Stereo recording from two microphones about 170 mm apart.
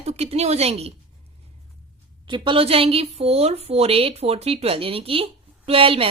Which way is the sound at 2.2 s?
30° right (ahead or behind).